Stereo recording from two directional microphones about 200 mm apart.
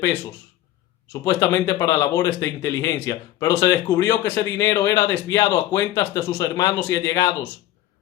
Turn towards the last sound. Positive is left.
turn(degrees=15)  # may be behind; listen again after turning